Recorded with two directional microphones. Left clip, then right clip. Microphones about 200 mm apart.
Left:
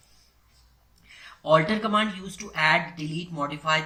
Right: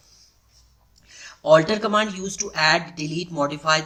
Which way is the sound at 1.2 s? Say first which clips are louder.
Right 5 dB; 40° right (ahead or behind).